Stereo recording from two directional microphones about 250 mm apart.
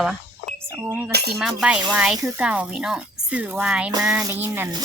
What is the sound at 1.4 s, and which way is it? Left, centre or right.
Speech, centre.